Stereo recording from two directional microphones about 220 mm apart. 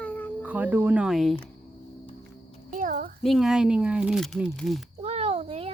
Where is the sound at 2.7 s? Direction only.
35° right (ahead or behind).